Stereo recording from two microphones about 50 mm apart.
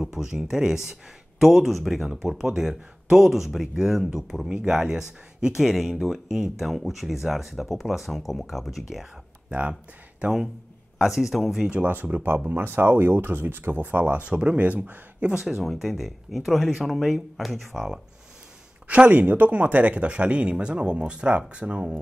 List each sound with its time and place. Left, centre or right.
0.0 s speech: centre
9.5 s speech: right
11.0 s speech: centre
11.8 s speech: right
14.2 s speech: right
15.3 s speech: centre
19.0 s speech: right